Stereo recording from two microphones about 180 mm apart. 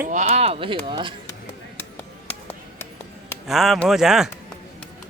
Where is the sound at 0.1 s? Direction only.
40° right (ahead or behind).